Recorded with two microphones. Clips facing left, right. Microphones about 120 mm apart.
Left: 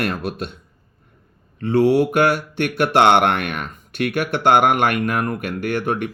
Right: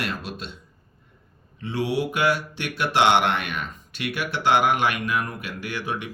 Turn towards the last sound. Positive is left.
turn(degrees=55)  # may be behind; listen again after turning